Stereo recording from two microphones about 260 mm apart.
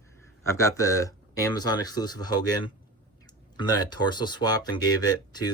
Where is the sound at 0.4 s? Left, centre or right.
Centre.